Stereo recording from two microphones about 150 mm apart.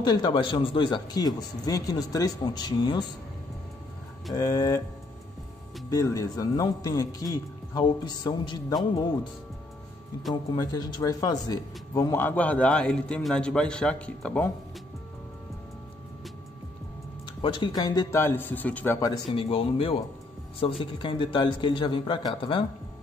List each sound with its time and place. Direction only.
0.0 s speech: 30° left (ahead or behind)
4.3 s speech: 20° left (ahead or behind)
5.9 s speech: 25° left (ahead or behind)
10.5 s speech: 25° left (ahead or behind); by 14.5 s 10° left (ahead or behind)
17.4 s speech: 30° left (ahead or behind)
18.2 s speech: 15° left (ahead or behind)
18.9 s a man's voice: 30° left (ahead or behind)